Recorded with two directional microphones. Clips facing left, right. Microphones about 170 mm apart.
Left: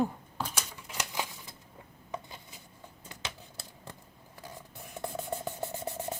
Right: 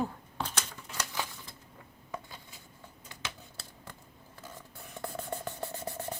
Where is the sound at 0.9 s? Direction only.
15° left (ahead or behind).